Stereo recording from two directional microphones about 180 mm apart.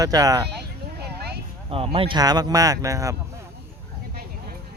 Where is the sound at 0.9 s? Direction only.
60° right (ahead or behind).